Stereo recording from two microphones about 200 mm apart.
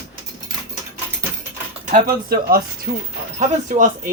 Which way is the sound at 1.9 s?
50° right (ahead or behind).